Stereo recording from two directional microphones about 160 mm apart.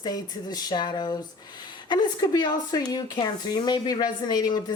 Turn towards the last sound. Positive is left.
turn(degrees=25)  # may be behind; listen again after turning